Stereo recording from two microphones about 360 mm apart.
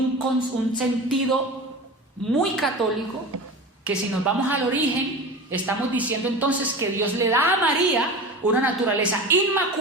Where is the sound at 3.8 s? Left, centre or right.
Centre.